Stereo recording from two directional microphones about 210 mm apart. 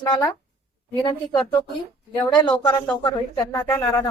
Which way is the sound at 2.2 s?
20° left (ahead or behind).